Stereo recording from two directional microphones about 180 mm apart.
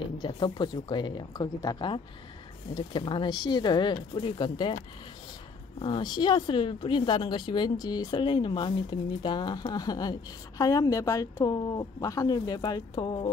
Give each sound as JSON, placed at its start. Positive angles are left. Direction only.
{"t": 0.2, "sound": "speech", "side_deg": 25}
{"t": 5.8, "sound": "speech", "side_deg": 25}